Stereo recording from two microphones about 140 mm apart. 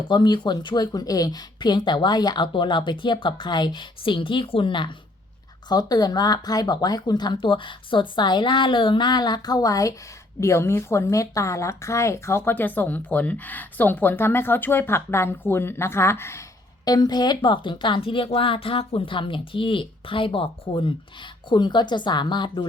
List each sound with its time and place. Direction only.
0.1 s a woman's voice: 35° left (ahead or behind)